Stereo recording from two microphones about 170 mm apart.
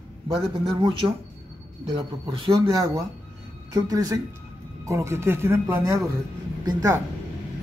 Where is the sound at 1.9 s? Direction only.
30° right (ahead or behind).